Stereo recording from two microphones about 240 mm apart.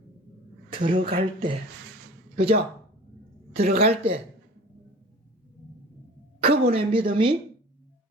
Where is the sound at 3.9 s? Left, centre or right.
Right.